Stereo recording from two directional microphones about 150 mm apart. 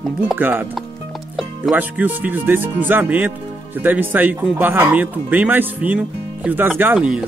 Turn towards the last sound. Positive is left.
turn(degrees=-5)  # may be behind; listen again after turning